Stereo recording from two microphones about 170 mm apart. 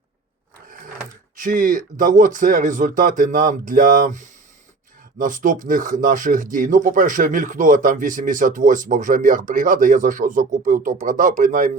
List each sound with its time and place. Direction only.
1.4 s speech: 50° right (ahead or behind)